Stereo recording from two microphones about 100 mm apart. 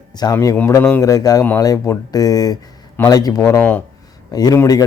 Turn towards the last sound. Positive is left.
turn(degrees=35)  # may be behind; listen again after turning